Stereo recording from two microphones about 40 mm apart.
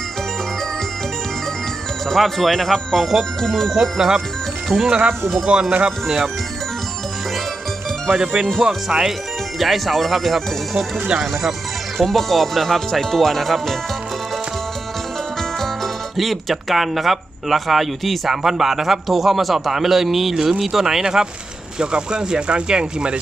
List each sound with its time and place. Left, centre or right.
2.0 s speech: centre
3.8 s speech: centre
8.1 s speech: right
9.6 s speech: centre
12.0 s speech: centre
15.4 s speech: centre; by 23.1 s right